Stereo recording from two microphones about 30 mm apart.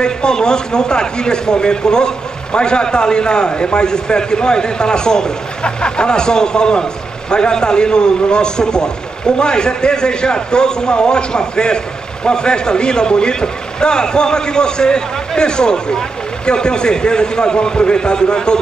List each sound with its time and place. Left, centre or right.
0.0 s speech: left